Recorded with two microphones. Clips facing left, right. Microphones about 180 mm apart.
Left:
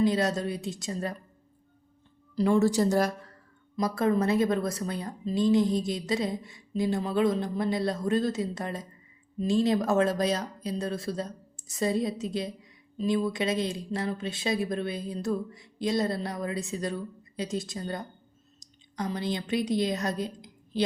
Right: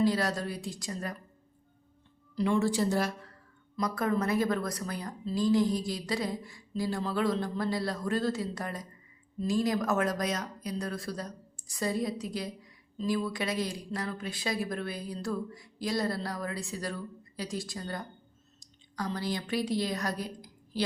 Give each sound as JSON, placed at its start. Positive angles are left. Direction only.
{"t": 0.0, "sound": "a woman's voice", "side_deg": 20}
{"t": 2.3, "sound": "a woman's voice", "side_deg": 40}
{"t": 3.8, "sound": "a woman's voice", "side_deg": 30}